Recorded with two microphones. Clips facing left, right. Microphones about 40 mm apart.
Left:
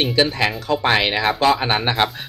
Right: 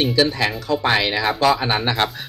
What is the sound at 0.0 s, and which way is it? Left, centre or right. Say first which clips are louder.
Speech: even; left.